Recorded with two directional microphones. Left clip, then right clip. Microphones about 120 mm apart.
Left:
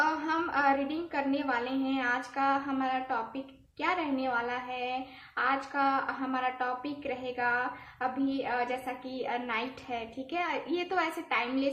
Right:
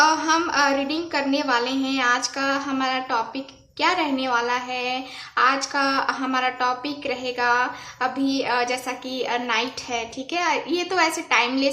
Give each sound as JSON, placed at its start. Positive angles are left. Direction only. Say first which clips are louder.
{"t": 0.0, "sound": "a woman's voice", "louder": "right 11 dB", "side_deg": -30}